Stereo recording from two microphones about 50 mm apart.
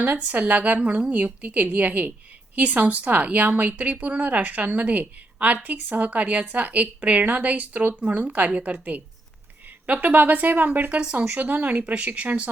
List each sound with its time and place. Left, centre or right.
0.0 s a woman's voice: right